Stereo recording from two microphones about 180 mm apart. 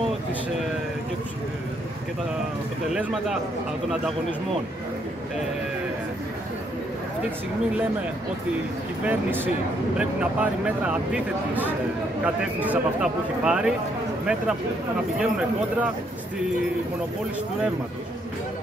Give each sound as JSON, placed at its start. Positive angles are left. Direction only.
{"t": 2.9, "sound": "speech", "side_deg": -5}
{"t": 9.0, "sound": "speech", "side_deg": -10}
{"t": 12.5, "sound": "speech", "side_deg": -5}
{"t": 15.1, "sound": "speech", "side_deg": -5}